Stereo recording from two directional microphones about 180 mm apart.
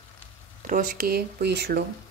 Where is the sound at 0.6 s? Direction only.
50° right (ahead or behind).